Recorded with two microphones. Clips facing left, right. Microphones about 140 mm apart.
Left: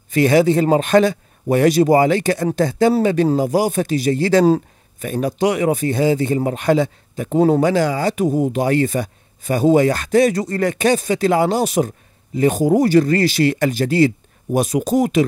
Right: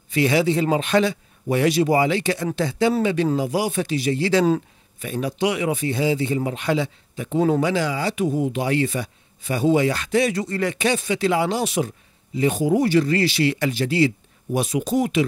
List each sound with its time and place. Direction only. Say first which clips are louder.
0.1 s speech: left 5 dB; 45° left (ahead or behind)